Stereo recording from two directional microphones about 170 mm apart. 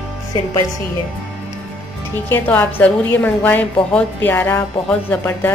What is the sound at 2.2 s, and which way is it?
A woman's voice, 10° left (ahead or behind).